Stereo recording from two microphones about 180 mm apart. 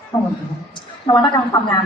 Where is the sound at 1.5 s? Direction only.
20° left (ahead or behind).